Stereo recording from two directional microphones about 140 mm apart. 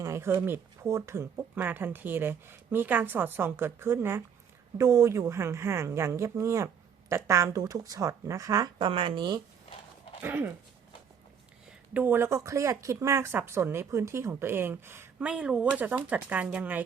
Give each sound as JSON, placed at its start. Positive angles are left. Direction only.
{"t": 0.0, "sound": "a woman's voice", "side_deg": -20}
{"t": 8.9, "sound": "speech", "side_deg": -40}
{"t": 10.2, "sound": "speech", "side_deg": -15}
{"t": 11.9, "sound": "speech", "side_deg": -15}